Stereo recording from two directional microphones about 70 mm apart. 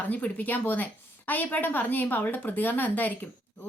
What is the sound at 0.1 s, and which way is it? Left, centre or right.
A woman's voice, left.